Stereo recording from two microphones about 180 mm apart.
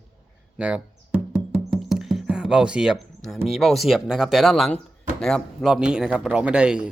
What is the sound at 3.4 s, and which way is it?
Speech, centre (ahead or behind).